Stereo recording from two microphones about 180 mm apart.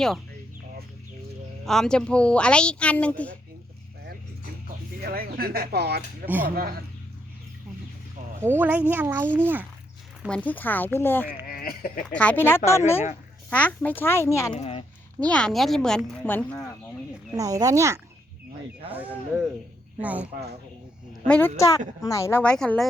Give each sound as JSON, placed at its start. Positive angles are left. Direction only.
{"t": 1.6, "sound": "speech", "side_deg": 0}
{"t": 5.0, "sound": "speech", "side_deg": -55}
{"t": 6.2, "sound": "a child's voice", "side_deg": -10}
{"t": 6.6, "sound": "speech", "side_deg": -60}
{"t": 8.4, "sound": "a child's voice", "side_deg": -10}
{"t": 10.2, "sound": "speech", "side_deg": 5}
{"t": 11.4, "sound": "speech", "side_deg": 55}
{"t": 12.1, "sound": "speech", "side_deg": 5}
{"t": 14.6, "sound": "speech", "side_deg": 35}
{"t": 15.2, "sound": "speech", "side_deg": 5}
{"t": 17.3, "sound": "a child's voice", "side_deg": -20}
{"t": 20.0, "sound": "a child's voice", "side_deg": -10}
{"t": 21.2, "sound": "speech", "side_deg": 5}